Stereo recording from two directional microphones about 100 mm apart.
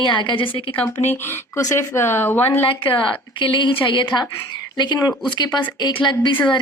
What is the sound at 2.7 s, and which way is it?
A woman's voice, 60° left (ahead or behind).